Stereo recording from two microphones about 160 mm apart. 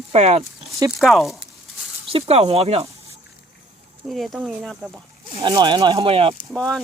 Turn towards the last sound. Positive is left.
turn(degrees=5)  # may be behind; listen again after turning